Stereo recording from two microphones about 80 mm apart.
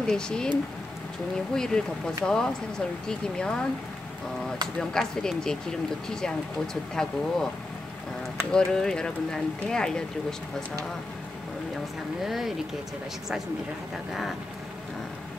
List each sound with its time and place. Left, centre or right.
0.0 s speech: centre
1.5 s speech: centre
4.7 s speech: centre
8.5 s speech: centre
12.3 s speech: centre